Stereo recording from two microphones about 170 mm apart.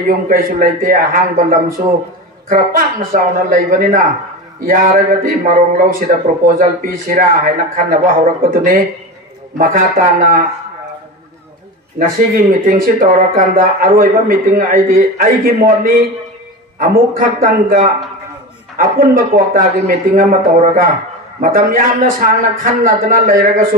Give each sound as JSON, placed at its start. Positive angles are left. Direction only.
{"t": 0.3, "sound": "speech", "side_deg": -55}
{"t": 12.0, "sound": "speech", "side_deg": -50}
{"t": 16.9, "sound": "speech", "side_deg": -55}
{"t": 18.8, "sound": "speech", "side_deg": -55}